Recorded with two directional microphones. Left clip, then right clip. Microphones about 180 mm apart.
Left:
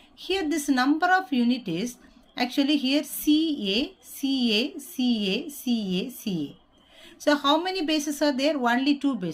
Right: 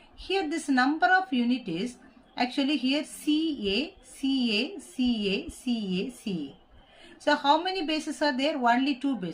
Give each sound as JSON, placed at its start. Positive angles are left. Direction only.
{"t": 0.2, "sound": "speech", "side_deg": 50}